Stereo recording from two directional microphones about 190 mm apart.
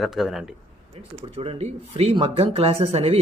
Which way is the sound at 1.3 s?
30° right (ahead or behind).